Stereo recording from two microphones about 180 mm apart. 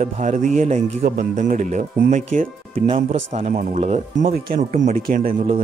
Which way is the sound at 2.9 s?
35° right (ahead or behind).